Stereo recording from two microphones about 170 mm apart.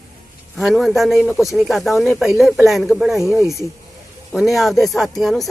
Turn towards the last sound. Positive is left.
turn(degrees=0)  # may be behind; listen again after turning